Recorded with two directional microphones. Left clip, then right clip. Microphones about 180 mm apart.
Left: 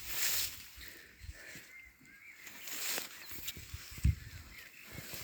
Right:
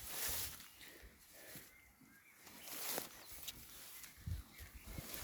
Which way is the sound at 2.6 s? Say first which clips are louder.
Left 6 dB; 5° right (ahead or behind).